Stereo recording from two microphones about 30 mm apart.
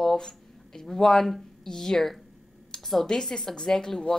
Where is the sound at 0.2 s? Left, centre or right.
Centre.